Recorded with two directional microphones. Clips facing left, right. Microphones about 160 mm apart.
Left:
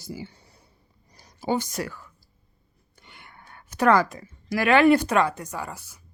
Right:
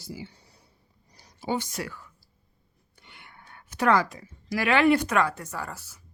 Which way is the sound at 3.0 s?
45° left (ahead or behind).